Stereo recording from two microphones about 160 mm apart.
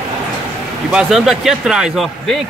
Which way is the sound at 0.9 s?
Centre (ahead or behind).